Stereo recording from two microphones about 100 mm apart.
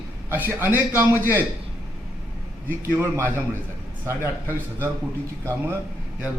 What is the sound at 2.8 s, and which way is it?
A man's voice, 20° right (ahead or behind).